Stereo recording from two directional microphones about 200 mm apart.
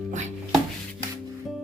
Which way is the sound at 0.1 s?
35° right (ahead or behind).